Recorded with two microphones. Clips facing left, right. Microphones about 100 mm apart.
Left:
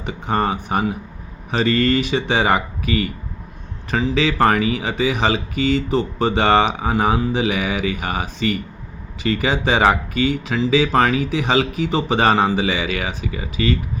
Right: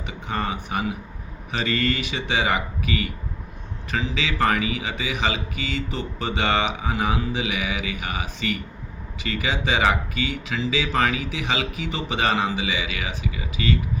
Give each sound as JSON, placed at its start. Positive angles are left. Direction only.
{"t": 0.0, "sound": "speech", "side_deg": 40}